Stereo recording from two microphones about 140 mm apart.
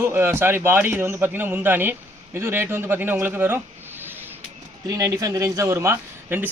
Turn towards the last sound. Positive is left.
turn(degrees=-15)  # may be behind; listen again after turning